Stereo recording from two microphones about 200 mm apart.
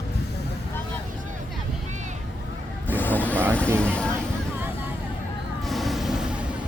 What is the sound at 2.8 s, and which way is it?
Vehicle, 10° left (ahead or behind).